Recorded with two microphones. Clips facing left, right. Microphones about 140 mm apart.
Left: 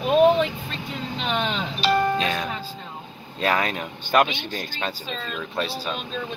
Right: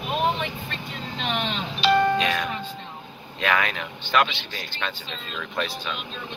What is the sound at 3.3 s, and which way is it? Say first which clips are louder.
Speech: left 1 dB; 35° left (ahead or behind).